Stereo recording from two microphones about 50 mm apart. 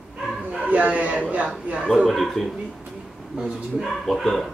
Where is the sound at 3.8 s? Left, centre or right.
Centre.